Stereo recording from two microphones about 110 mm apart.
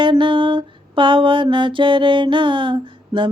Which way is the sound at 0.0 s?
50° right (ahead or behind).